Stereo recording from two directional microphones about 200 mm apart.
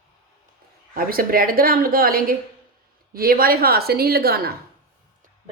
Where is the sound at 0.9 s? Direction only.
45° right (ahead or behind).